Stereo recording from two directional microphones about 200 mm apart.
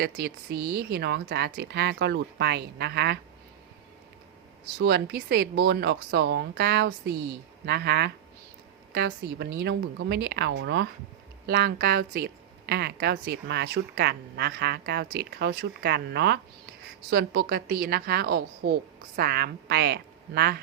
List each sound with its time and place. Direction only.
0.0 s speech: 50° right (ahead or behind)
4.8 s a woman's voice: 55° right (ahead or behind)